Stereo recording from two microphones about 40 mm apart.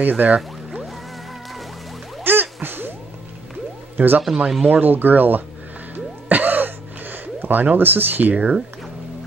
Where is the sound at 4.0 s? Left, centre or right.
Right.